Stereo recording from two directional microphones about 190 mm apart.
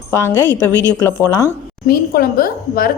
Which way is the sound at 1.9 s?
50° left (ahead or behind).